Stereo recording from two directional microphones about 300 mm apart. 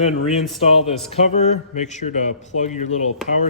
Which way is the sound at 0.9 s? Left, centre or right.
Left.